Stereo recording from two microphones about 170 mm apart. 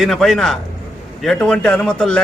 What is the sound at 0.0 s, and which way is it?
A man's voice, centre (ahead or behind).